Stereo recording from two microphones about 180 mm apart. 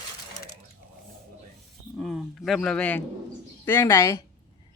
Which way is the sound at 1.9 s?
Centre (ahead or behind).